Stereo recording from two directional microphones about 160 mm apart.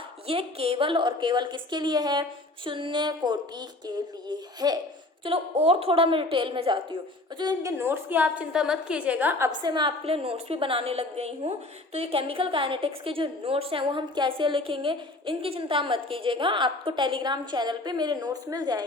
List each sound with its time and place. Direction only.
0.3 s speech: 35° right (ahead or behind)
5.2 s a woman's voice: 35° right (ahead or behind)
7.8 s a woman's voice: 10° right (ahead or behind)
9.5 s a woman's voice: 30° right (ahead or behind)